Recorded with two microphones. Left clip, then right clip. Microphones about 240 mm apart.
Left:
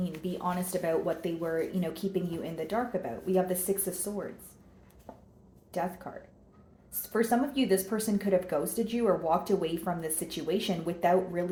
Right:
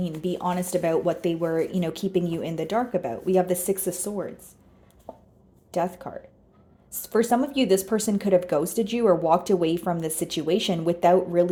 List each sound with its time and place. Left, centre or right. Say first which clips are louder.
0.2 s speech: right 7 dB; right
5.1 s a sound: right 7 dB; centre
5.7 s speech: right 7 dB; right
7.1 s speech: right 6 dB; right